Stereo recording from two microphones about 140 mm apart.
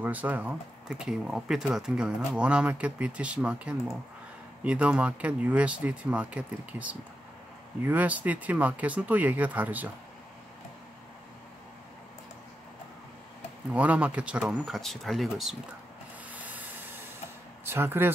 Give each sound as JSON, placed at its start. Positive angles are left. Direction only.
{"t": 0.0, "sound": "speech", "side_deg": -10}
{"t": 13.7, "sound": "speech", "side_deg": -10}
{"t": 16.3, "sound": "rub", "side_deg": -10}
{"t": 17.6, "sound": "speech", "side_deg": -15}